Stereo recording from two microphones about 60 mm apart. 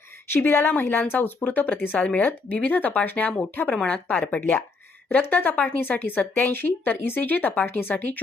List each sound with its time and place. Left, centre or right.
0.3 s speech: left